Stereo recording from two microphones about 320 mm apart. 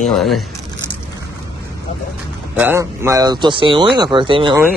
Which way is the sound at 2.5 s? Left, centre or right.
Centre.